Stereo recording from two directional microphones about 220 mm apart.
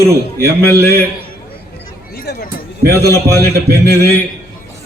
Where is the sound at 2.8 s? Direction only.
45° right (ahead or behind).